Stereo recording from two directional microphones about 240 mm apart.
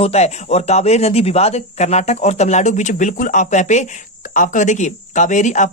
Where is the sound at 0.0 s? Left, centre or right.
Left.